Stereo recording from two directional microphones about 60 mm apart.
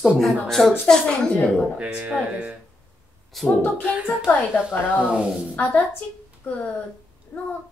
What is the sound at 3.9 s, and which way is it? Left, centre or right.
Speech, centre.